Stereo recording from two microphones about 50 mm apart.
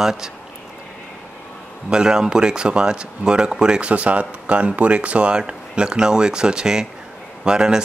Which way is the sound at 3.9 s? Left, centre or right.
Right.